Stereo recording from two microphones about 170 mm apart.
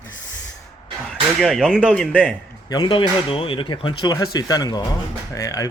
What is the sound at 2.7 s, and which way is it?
Speech, 30° left (ahead or behind).